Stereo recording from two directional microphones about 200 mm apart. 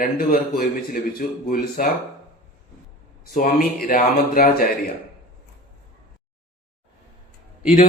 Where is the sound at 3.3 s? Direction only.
45° left (ahead or behind).